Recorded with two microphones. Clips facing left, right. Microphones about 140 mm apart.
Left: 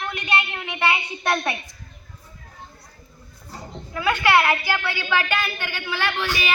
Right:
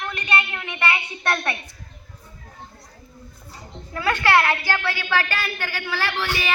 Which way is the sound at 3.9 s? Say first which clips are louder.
Even; 15° left (ahead or behind).